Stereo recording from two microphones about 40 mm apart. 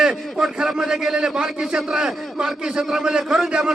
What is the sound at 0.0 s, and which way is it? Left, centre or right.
A man's voice, centre.